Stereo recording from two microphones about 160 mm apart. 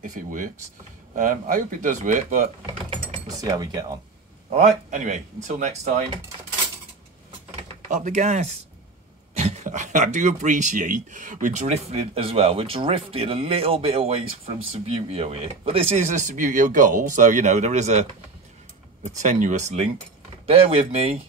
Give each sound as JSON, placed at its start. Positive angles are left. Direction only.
{"t": 0.0, "sound": "speech", "side_deg": -55}
{"t": 3.3, "sound": "cutlery", "side_deg": -20}
{"t": 4.5, "sound": "speech", "side_deg": -45}
{"t": 7.6, "sound": "speech", "side_deg": -45}
{"t": 19.0, "sound": "speech", "side_deg": -50}
{"t": 20.4, "sound": "speech", "side_deg": -35}